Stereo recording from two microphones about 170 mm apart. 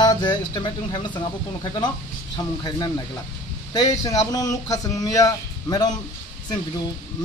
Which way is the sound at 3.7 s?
20° left (ahead or behind).